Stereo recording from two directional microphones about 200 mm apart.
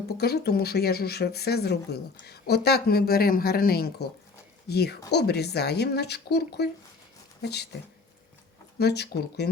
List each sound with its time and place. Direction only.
0.2 s speech: 55° left (ahead or behind)
8.8 s speech: 55° left (ahead or behind)